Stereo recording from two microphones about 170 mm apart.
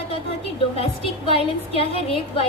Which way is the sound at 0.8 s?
35° left (ahead or behind).